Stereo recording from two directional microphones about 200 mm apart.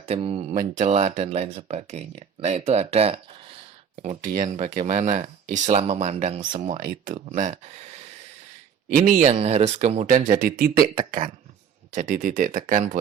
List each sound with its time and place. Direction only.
0.0 s speech: 30° right (ahead or behind)